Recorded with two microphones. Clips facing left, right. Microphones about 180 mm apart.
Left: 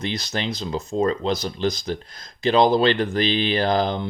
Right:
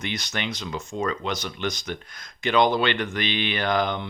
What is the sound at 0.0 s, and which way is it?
Speech, 30° left (ahead or behind).